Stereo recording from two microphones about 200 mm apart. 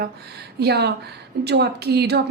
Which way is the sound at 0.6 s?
55° right (ahead or behind).